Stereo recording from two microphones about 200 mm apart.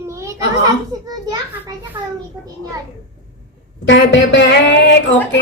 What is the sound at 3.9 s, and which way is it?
Speech, 65° left (ahead or behind).